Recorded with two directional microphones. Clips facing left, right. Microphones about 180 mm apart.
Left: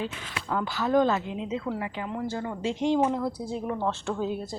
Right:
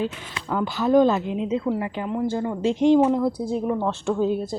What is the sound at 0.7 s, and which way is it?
Speech, 15° right (ahead or behind).